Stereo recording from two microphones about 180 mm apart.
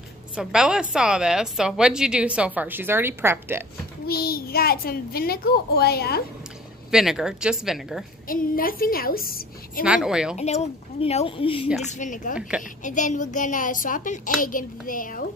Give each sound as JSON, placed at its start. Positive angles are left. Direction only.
{"t": 0.4, "sound": "a woman's voice", "side_deg": -5}
{"t": 4.1, "sound": "a child's voice", "side_deg": 60}
{"t": 6.9, "sound": "a woman's voice", "side_deg": 0}
{"t": 8.3, "sound": "a child's voice", "side_deg": 50}
{"t": 9.8, "sound": "a woman's voice", "side_deg": -5}
{"t": 10.3, "sound": "speech", "side_deg": 40}
{"t": 11.8, "sound": "a child's voice", "side_deg": 45}
{"t": 12.4, "sound": "a woman's voice", "side_deg": -5}
{"t": 12.8, "sound": "a child's voice", "side_deg": 45}